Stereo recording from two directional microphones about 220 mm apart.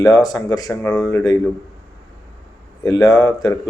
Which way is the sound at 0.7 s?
5° left (ahead or behind).